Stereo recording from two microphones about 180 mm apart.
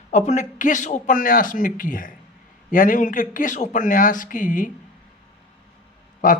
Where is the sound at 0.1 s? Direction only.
40° left (ahead or behind).